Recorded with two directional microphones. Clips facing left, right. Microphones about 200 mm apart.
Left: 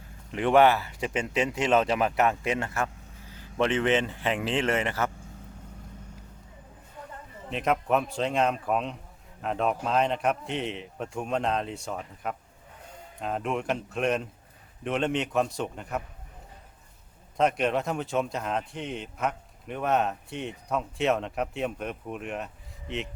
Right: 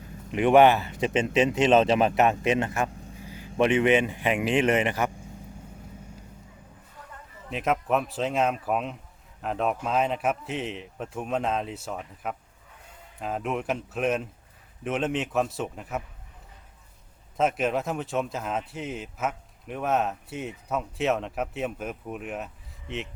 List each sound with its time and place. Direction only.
0.3 s speech: 15° right (ahead or behind)
7.5 s speech: centre (ahead or behind)
17.3 s speech: 5° right (ahead or behind)